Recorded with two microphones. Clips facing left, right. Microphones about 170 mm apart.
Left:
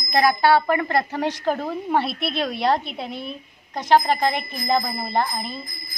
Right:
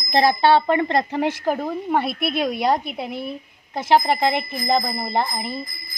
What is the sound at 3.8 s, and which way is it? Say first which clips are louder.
Speech: even; 15° right (ahead or behind).